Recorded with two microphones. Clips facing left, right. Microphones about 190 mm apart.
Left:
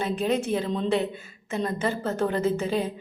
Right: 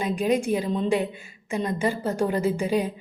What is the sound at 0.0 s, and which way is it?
A woman's voice, 10° right (ahead or behind).